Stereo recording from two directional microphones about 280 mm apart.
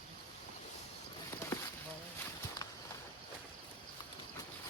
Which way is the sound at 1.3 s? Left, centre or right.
Centre.